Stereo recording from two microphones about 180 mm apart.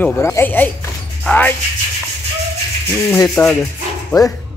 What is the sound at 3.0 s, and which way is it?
Speech, 15° left (ahead or behind).